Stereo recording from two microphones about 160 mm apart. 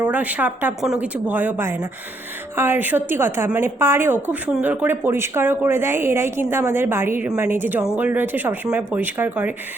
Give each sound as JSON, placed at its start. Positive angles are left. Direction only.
{"t": 0.0, "sound": "a woman's voice", "side_deg": -10}